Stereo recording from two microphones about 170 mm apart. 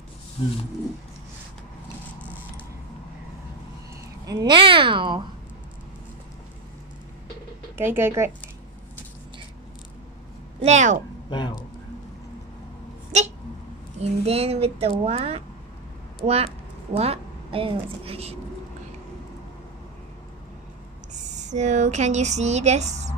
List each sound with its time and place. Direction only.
0.4 s roaring cats: 30° left (ahead or behind)
4.3 s a woman's voice: 25° right (ahead or behind)
7.7 s speech: 15° right (ahead or behind)
10.6 s speech: 45° right (ahead or behind)
11.2 s speech: 25° left (ahead or behind)
13.9 s a woman's voice: 35° right (ahead or behind)
21.1 s speech: 45° right (ahead or behind)